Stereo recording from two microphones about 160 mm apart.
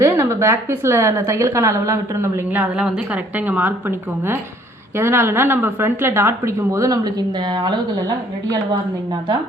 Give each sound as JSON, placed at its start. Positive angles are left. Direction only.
{"t": 0.0, "sound": "a woman's voice", "side_deg": -15}